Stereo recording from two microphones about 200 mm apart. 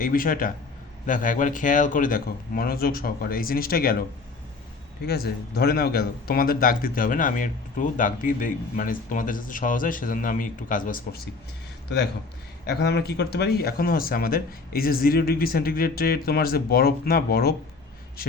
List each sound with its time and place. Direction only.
0.0 s speech: 45° left (ahead or behind)
5.0 s speech: 50° left (ahead or behind)
12.6 s speech: 55° left (ahead or behind)